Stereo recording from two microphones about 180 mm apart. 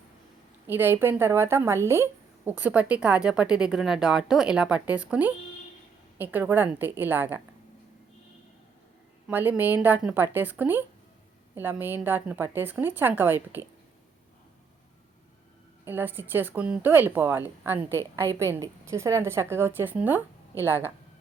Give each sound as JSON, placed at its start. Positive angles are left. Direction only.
{"t": 0.7, "sound": "speech", "side_deg": -10}
{"t": 9.3, "sound": "speech", "side_deg": -10}
{"t": 15.8, "sound": "speech", "side_deg": -10}